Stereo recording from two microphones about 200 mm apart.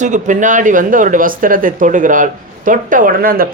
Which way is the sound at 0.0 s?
40° right (ahead or behind).